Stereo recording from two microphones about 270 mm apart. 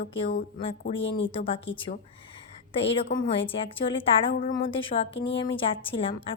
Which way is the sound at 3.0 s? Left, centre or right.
Left.